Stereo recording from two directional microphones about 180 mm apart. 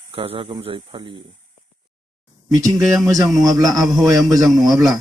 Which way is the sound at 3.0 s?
20° right (ahead or behind).